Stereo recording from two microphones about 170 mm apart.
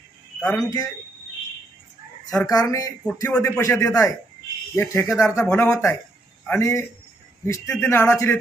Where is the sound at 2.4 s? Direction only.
20° left (ahead or behind).